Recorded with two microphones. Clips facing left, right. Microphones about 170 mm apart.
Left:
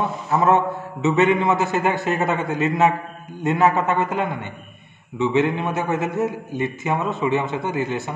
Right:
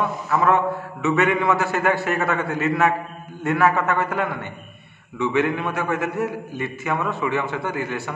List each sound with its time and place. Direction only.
0.3 s a man's voice: 25° left (ahead or behind)